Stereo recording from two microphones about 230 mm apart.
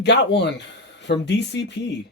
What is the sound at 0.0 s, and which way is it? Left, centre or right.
Speech, left.